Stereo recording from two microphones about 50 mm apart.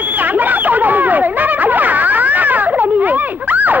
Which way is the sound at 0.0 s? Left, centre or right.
Right.